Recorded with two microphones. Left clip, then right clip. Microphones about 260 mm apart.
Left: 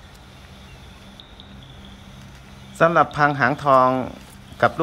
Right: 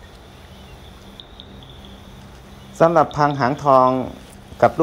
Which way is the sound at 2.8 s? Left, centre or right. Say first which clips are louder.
Right 1 dB; centre.